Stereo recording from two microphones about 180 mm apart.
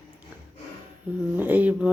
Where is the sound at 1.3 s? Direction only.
10° right (ahead or behind).